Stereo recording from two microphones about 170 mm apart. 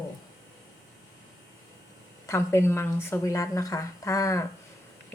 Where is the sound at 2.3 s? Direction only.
15° left (ahead or behind).